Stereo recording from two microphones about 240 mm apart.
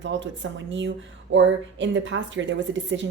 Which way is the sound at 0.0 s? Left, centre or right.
Right.